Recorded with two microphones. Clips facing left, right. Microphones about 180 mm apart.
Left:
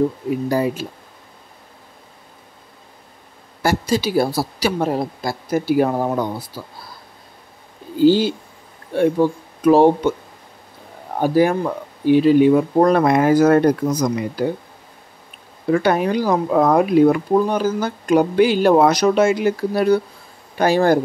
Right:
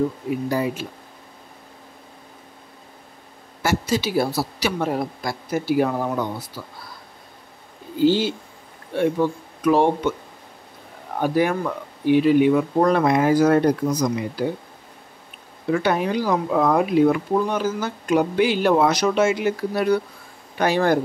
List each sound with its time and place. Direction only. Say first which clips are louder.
0.5 s speech: left 4 dB; 40° left (ahead or behind)
3.6 s speech: left 3 dB; 35° left (ahead or behind)
8.0 s speech: left 4 dB; 40° left (ahead or behind)
11.1 s speech: left 4 dB; 35° left (ahead or behind)
13.0 s speech: left 3 dB; 50° left (ahead or behind)
15.7 s speech: left 4 dB; 45° left (ahead or behind)